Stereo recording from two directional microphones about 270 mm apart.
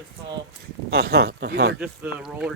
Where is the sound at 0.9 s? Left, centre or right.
Right.